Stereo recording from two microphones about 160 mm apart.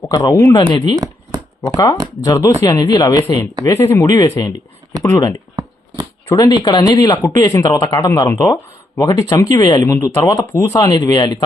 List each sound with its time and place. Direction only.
0.1 s speech: 25° left (ahead or behind)
1.7 s speech: 20° left (ahead or behind)
4.2 s speech: 30° left (ahead or behind)
5.0 s speech: 20° left (ahead or behind)